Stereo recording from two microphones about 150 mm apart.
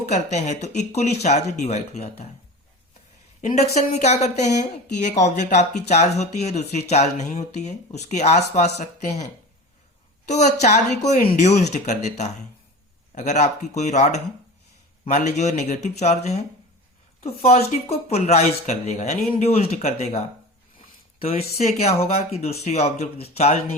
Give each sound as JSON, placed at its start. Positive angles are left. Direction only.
{"t": 0.1, "sound": "speech", "side_deg": 50}
{"t": 3.4, "sound": "speech", "side_deg": 50}
{"t": 10.2, "sound": "speech", "side_deg": 50}